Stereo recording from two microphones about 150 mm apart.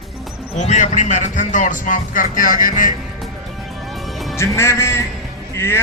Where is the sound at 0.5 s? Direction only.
50° left (ahead or behind).